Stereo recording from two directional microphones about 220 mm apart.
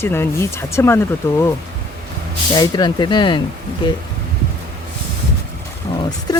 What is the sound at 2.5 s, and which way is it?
Speech, 20° left (ahead or behind).